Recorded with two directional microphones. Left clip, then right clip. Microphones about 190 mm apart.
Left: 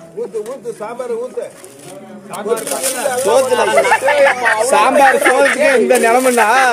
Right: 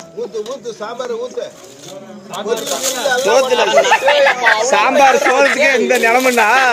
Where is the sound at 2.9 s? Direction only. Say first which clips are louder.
Even; 5° left (ahead or behind).